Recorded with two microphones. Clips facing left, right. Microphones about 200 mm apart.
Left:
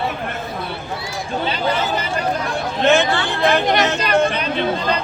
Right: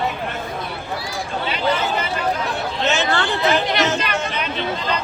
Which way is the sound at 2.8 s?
55° left (ahead or behind).